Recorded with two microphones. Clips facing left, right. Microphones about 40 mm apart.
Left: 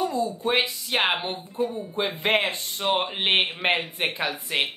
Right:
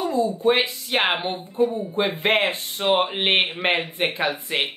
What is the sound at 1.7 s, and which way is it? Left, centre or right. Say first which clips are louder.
Speech: right 4 dB; right.